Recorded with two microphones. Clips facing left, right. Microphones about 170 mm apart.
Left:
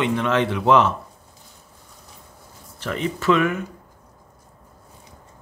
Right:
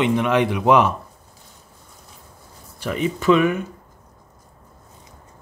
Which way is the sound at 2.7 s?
15° right (ahead or behind).